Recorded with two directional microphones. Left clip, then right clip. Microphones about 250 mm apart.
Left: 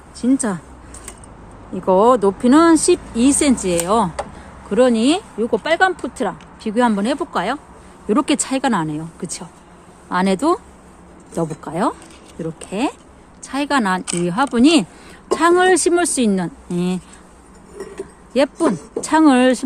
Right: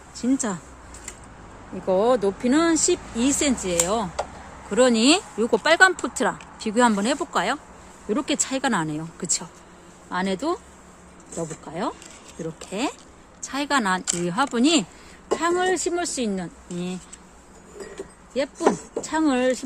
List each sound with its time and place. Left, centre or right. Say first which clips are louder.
0.2 s speech: left 6 dB; centre
1.9 s speech: left 7 dB; centre
4.7 s speech: left 3 dB; centre
8.0 s speech: left 7 dB; centre
10.1 s speech: left 8 dB; centre
15.4 s speech: left 10 dB; centre
18.3 s speech: left 6 dB; left